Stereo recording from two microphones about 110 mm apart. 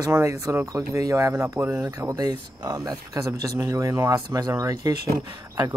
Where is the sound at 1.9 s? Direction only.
35° right (ahead or behind).